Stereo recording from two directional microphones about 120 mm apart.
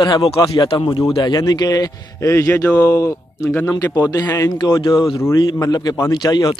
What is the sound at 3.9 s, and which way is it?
Speech, 25° left (ahead or behind).